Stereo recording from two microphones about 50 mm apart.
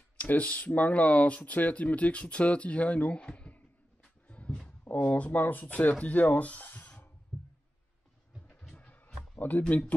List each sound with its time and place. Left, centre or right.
0.2 s speech: left
8.7 s a sound: left
9.6 s speech: left